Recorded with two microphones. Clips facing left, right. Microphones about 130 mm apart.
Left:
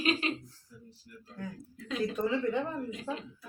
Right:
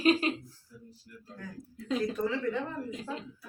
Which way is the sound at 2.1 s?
15° left (ahead or behind).